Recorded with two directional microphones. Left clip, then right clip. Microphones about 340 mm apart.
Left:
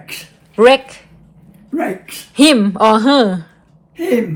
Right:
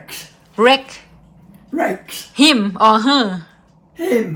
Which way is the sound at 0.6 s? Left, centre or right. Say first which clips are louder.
Left 3 dB; centre.